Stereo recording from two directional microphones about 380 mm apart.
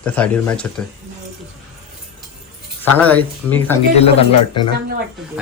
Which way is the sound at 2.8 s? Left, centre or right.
Centre.